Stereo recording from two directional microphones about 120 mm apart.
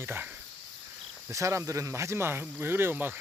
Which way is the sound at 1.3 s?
25° right (ahead or behind).